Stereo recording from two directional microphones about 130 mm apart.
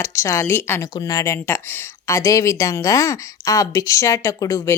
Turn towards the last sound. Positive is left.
turn(degrees=25)  # may be behind; listen again after turning